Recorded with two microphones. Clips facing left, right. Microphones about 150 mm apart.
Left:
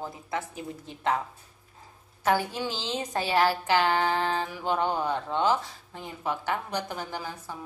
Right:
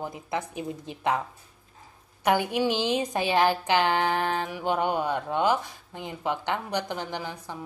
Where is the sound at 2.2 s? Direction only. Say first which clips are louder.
Right 3 dB; 15° right (ahead or behind).